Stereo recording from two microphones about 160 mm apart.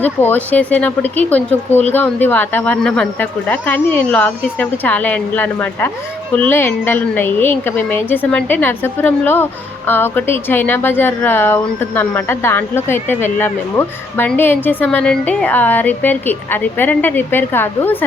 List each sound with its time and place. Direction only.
0.0 s a woman's voice: 10° left (ahead or behind)